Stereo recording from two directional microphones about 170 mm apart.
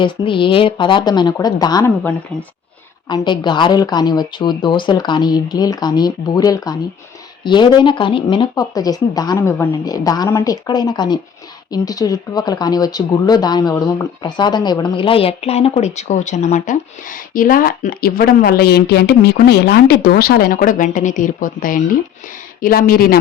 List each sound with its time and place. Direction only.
0.0 s speech: 30° left (ahead or behind)
3.1 s a woman's voice: 25° left (ahead or behind); by 23.1 s 60° left (ahead or behind)